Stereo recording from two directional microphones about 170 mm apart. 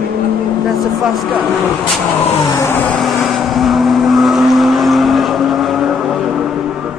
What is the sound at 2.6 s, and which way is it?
Vehicle, 15° left (ahead or behind).